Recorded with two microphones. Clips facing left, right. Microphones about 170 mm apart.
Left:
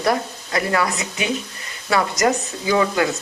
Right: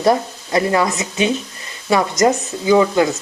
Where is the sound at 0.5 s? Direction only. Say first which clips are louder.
Right 4 dB; 20° right (ahead or behind).